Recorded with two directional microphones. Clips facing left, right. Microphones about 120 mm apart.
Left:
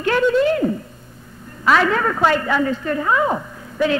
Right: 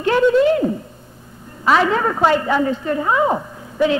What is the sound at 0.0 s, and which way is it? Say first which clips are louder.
A woman's voice: right 2 dB; 20° right (ahead or behind).